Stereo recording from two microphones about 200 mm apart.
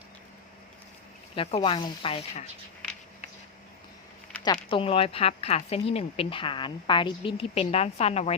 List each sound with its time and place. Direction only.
1.4 s a woman's voice: 30° left (ahead or behind)
4.7 s a woman's voice: 30° left (ahead or behind)